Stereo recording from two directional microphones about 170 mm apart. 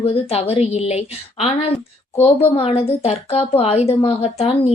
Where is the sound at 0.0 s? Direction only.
35° left (ahead or behind).